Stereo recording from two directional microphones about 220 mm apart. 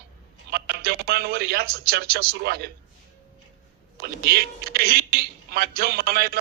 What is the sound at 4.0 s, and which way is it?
Speech, 45° right (ahead or behind).